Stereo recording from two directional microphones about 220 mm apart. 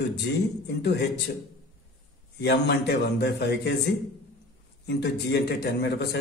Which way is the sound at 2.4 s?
50° left (ahead or behind).